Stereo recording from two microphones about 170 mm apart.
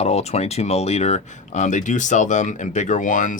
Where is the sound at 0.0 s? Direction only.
40° left (ahead or behind).